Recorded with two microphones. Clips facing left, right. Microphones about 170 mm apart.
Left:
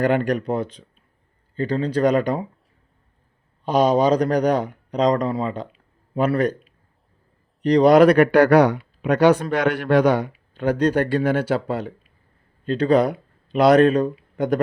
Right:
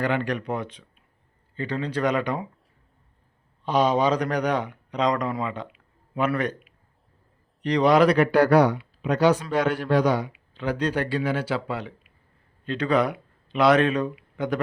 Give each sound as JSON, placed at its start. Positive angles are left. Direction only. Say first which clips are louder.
{"t": 0.0, "sound": "speech", "louder": "left 6 dB", "side_deg": 45}
{"t": 3.6, "sound": "speech", "louder": "left 4 dB", "side_deg": 40}
{"t": 10.3, "sound": "speech", "louder": "left 6 dB", "side_deg": 50}